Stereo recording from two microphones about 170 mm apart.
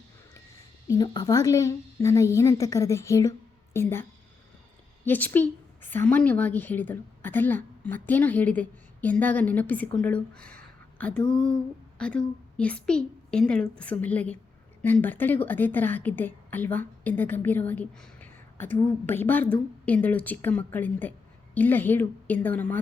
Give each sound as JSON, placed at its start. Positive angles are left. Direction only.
{"t": 0.9, "sound": "a woman's voice", "side_deg": 20}
{"t": 5.0, "sound": "a woman's voice", "side_deg": 10}